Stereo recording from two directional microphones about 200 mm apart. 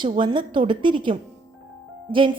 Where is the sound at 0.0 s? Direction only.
25° right (ahead or behind).